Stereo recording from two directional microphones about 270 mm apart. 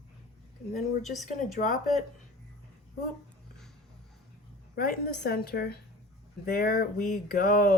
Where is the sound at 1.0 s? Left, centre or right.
Centre.